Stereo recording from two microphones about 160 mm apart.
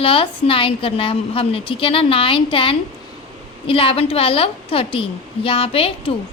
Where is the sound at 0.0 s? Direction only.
35° left (ahead or behind).